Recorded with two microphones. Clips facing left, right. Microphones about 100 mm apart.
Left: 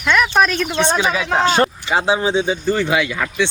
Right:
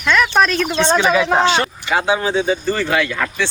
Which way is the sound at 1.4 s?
40° left (ahead or behind).